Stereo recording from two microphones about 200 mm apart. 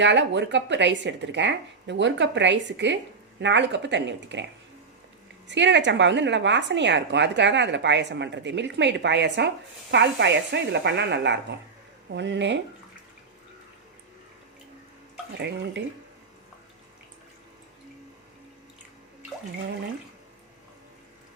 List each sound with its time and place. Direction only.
0.0 s speech: 60° right (ahead or behind)
5.5 s speech: 60° right (ahead or behind)
15.4 s speech: 60° right (ahead or behind)